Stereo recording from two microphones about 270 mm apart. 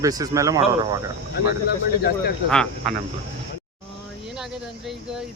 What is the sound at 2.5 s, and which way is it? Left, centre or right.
Speech, centre.